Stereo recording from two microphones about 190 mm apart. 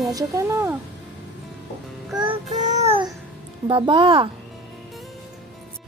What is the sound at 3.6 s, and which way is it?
Speech, 25° right (ahead or behind).